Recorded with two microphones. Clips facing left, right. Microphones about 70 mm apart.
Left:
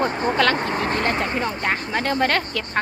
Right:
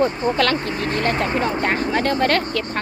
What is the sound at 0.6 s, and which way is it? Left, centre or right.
Speech, left.